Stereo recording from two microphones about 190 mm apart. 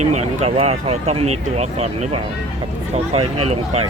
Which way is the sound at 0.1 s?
35° right (ahead or behind).